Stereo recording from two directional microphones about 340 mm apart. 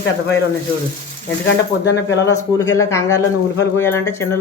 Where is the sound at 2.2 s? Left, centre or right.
Centre.